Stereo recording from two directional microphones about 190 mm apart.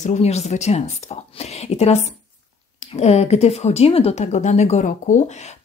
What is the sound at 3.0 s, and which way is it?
Speech, 35° left (ahead or behind).